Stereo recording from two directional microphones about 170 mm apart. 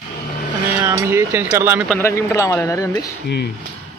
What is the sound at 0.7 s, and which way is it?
Speech, 15° right (ahead or behind).